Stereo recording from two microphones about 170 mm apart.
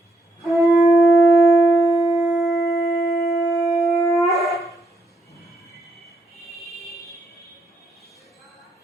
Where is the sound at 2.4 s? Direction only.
75° left (ahead or behind).